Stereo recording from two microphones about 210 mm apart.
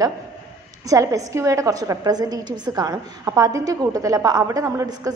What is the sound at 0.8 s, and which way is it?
A woman's voice, 15° right (ahead or behind).